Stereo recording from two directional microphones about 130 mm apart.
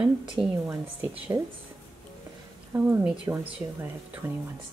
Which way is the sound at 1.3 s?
20° right (ahead or behind).